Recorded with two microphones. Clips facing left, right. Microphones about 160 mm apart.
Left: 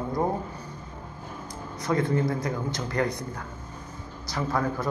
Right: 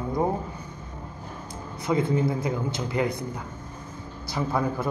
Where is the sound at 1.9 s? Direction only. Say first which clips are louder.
Right 1 dB; 15° right (ahead or behind).